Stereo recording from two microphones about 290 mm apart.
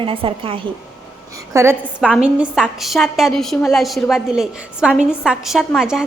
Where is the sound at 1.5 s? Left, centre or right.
Centre.